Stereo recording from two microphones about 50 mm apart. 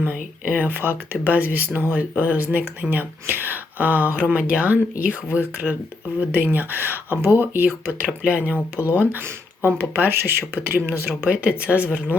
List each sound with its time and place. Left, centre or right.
0.0 s speech: right
6.1 s speech: right
7.9 s speech: right
8.9 s speech: right
11.3 s speech: right